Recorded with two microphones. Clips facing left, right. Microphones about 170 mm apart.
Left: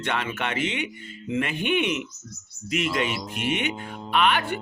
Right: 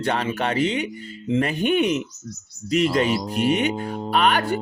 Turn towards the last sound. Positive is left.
turn(degrees=-40)  # may be behind; listen again after turning